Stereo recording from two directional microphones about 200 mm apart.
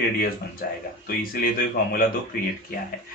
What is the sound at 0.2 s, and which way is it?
Speech, 50° left (ahead or behind).